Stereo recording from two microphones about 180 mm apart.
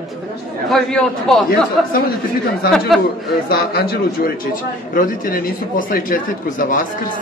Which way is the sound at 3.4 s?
55° left (ahead or behind).